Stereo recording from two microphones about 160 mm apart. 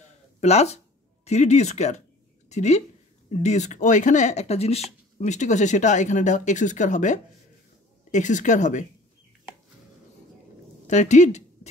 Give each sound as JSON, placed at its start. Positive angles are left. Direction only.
{"t": 0.4, "sound": "speech", "side_deg": 40}
{"t": 10.9, "sound": "speech", "side_deg": 45}